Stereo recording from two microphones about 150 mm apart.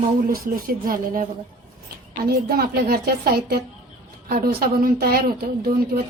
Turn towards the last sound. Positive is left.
turn(degrees=-90)